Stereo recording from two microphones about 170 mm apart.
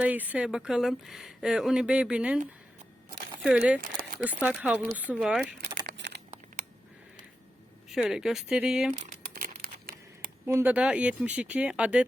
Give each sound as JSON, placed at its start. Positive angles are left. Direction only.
{"t": 0.0, "sound": "speech", "side_deg": -10}
{"t": 3.4, "sound": "speech", "side_deg": -5}
{"t": 5.8, "sound": "a sound", "side_deg": -85}
{"t": 7.9, "sound": "speech", "side_deg": 0}
{"t": 9.0, "sound": "crumpling", "side_deg": -50}
{"t": 10.4, "sound": "speech", "side_deg": -15}